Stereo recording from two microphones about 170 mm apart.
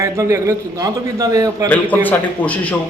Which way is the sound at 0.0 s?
15° right (ahead or behind).